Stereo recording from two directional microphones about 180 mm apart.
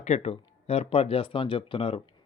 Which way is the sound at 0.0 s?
35° left (ahead or behind).